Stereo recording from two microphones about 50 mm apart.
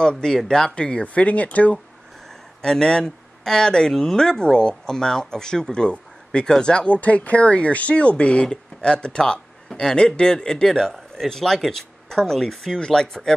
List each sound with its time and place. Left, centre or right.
0.0 s speech: centre; by 1.8 s left
2.6 s speech: centre